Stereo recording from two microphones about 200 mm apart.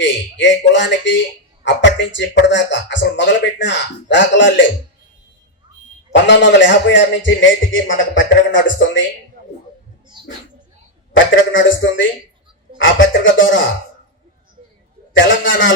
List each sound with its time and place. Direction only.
0.0 s speech: 65° left (ahead or behind)
6.2 s speech: 65° left (ahead or behind)
10.2 s a sound: 20° right (ahead or behind)
11.1 s a man's voice: 70° left (ahead or behind)
15.1 s a man's voice: 70° left (ahead or behind)